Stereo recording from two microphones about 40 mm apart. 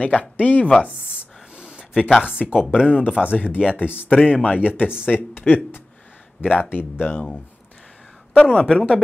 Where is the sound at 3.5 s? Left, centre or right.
Left.